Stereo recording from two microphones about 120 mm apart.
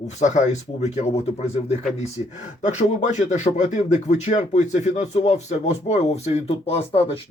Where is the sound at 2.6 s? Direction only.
85° left; by 7.2 s 55° left (ahead or behind).